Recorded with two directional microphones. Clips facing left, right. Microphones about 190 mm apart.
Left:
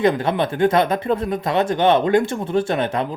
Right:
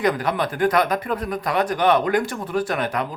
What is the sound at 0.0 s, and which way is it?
Speech, 25° left (ahead or behind).